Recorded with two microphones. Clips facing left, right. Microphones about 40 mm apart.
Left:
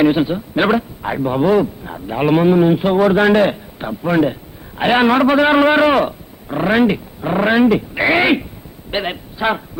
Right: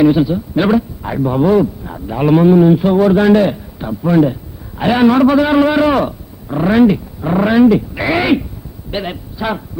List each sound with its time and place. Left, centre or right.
0.0 s a man's voice: left